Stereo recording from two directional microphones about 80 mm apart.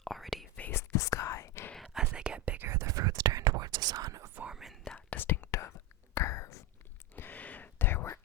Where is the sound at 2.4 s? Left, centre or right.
Right.